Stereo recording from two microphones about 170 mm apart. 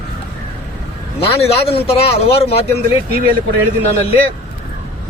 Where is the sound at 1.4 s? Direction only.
35° left (ahead or behind).